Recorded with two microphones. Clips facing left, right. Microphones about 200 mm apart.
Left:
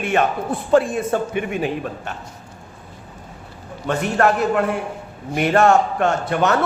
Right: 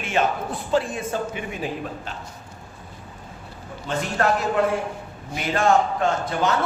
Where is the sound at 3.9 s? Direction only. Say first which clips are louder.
Left 5 dB; 60° left (ahead or behind).